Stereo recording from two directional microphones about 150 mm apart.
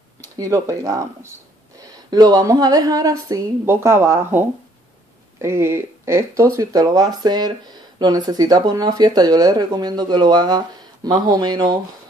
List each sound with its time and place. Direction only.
0.4 s speech: 20° right (ahead or behind)